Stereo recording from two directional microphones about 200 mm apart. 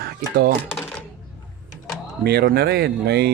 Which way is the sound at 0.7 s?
5° left (ahead or behind).